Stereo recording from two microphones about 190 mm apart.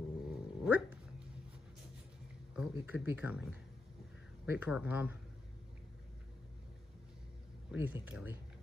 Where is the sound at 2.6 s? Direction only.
5° right (ahead or behind).